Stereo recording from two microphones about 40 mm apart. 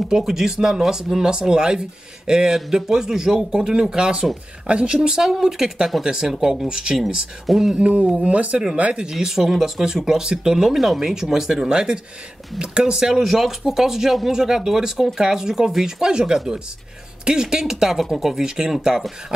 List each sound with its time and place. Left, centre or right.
0.1 s speech: centre
7.7 s speech: right
9.1 s speech: centre
11.7 s speech: right